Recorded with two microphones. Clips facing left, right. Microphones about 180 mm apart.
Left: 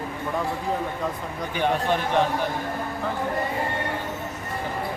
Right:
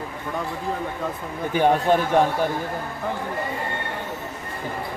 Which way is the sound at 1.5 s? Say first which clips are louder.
Right 5 dB; 45° right (ahead or behind).